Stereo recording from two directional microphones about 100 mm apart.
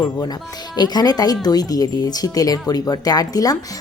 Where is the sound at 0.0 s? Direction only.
45° left (ahead or behind).